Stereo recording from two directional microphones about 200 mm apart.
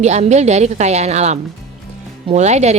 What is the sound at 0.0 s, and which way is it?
A woman's voice, 35° right (ahead or behind).